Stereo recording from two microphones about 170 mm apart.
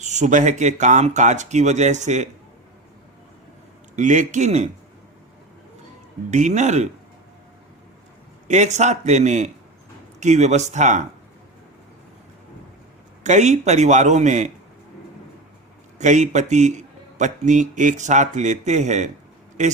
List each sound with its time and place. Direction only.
0.0 s speech: 45° right (ahead or behind)
3.9 s speech: 45° right (ahead or behind)
6.3 s speech: 45° right (ahead or behind)
8.4 s speech: 45° right (ahead or behind)
13.2 s speech: 45° right (ahead or behind)
16.0 s speech: 45° right (ahead or behind)